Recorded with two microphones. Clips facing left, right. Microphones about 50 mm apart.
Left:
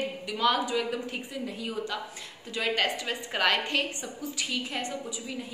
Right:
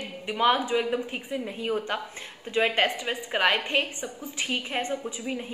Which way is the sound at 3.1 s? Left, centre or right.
Centre.